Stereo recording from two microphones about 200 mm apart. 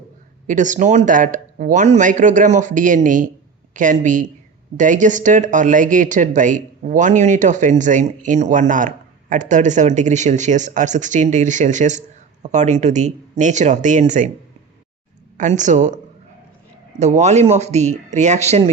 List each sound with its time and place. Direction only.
0.4 s speech: 40° right (ahead or behind)
15.4 s speech: 40° right (ahead or behind)
17.0 s speech: 35° right (ahead or behind)